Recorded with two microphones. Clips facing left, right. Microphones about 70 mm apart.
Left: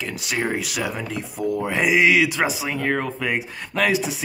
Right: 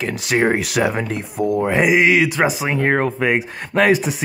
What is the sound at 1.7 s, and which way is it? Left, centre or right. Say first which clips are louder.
Speech: right 2 dB; right.